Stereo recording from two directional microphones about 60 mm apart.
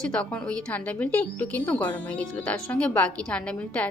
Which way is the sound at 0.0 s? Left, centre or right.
Centre.